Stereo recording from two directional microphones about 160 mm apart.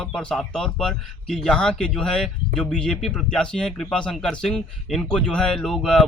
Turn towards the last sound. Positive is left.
turn(degrees=5)  # may be behind; listen again after turning